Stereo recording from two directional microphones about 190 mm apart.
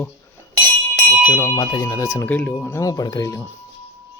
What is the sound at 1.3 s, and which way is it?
Speech, 20° left (ahead or behind).